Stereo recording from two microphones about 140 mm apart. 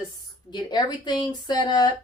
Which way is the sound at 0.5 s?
30° left (ahead or behind).